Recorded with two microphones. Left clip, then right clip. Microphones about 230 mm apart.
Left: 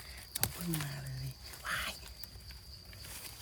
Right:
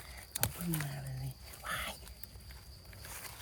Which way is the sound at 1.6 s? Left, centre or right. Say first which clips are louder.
Left 2 dB; centre.